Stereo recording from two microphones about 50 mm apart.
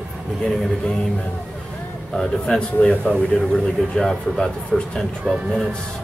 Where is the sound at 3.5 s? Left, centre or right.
Centre.